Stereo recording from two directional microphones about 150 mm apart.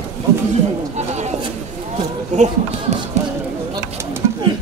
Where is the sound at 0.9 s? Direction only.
50° right (ahead or behind).